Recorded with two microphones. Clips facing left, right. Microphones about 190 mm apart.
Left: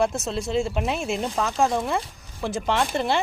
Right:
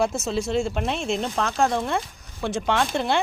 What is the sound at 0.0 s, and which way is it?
Speech, centre (ahead or behind).